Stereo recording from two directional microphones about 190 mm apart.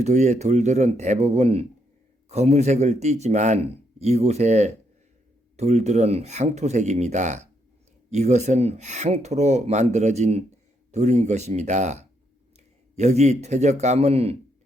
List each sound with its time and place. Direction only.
0.0 s speech: 35° right (ahead or behind)